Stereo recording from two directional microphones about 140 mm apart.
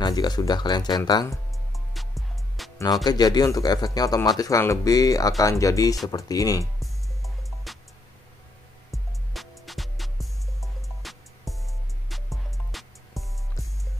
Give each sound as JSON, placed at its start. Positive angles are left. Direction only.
{"t": 0.0, "sound": "speech", "side_deg": 30}
{"t": 1.3, "sound": "music", "side_deg": 0}
{"t": 2.8, "sound": "speech", "side_deg": 30}
{"t": 6.8, "sound": "music", "side_deg": 0}
{"t": 8.9, "sound": "music", "side_deg": 0}